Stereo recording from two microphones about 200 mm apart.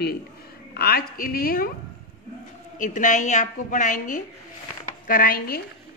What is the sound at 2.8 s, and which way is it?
A woman's voice, 40° left (ahead or behind).